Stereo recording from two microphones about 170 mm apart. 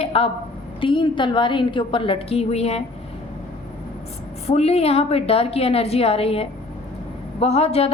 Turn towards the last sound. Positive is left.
turn(degrees=35)  # may be behind; listen again after turning